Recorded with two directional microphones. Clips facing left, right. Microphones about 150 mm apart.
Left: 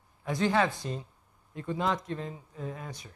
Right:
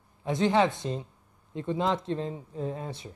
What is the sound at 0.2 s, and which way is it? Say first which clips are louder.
Speech: right 3 dB; 20° right (ahead or behind).